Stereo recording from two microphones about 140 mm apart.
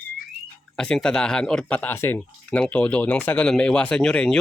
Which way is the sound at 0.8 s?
5° left (ahead or behind).